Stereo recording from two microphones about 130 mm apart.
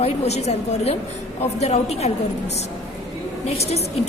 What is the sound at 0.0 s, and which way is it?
A woman's voice, 55° left (ahead or behind).